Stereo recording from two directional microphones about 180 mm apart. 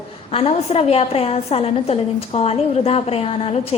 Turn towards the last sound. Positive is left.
turn(degrees=35)  # may be behind; listen again after turning